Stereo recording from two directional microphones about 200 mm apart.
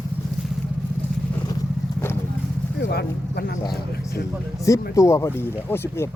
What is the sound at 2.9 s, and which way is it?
Speech, 55° left (ahead or behind).